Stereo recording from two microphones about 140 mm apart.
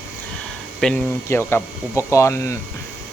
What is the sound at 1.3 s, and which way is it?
Speech, 20° left (ahead or behind).